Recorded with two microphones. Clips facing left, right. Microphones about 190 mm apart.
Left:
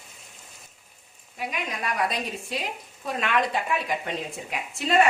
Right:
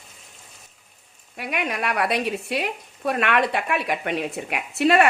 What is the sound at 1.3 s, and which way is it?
Speech, 70° right (ahead or behind).